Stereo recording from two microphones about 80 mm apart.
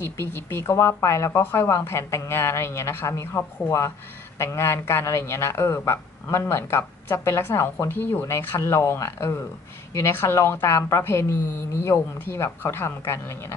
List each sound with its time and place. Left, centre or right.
0.0 s a woman's voice: left
1.4 s a woman's voice: left